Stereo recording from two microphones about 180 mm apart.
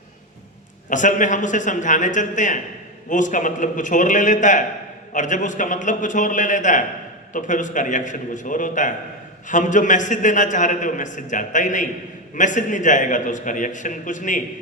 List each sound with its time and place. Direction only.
0.9 s a man's voice: 45° left (ahead or behind)